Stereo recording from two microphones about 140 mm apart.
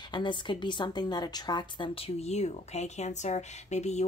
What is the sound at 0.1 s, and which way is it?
A woman's voice, 35° left (ahead or behind).